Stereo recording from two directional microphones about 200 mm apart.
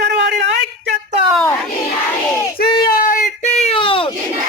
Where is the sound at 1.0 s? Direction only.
30° right (ahead or behind).